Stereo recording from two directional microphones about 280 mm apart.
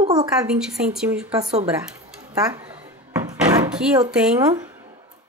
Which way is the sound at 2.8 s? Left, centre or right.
Centre.